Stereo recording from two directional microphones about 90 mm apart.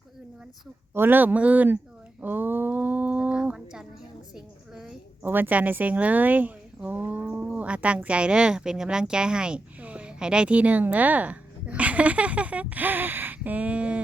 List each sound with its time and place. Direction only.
0.9 s speech: 20° right (ahead or behind)
2.2 s livestock: 20° right (ahead or behind)
4.4 s a woman's voice: 5° right (ahead or behind)
5.2 s a woman's voice: 20° right (ahead or behind)